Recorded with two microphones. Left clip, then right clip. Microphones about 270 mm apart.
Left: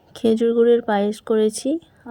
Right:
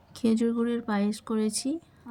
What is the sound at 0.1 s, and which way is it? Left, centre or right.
Speech, centre.